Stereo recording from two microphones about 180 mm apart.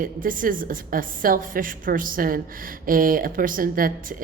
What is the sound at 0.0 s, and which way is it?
A woman's voice, 50° right (ahead or behind).